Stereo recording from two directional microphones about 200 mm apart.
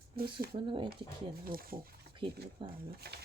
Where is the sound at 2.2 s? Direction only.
25° right (ahead or behind).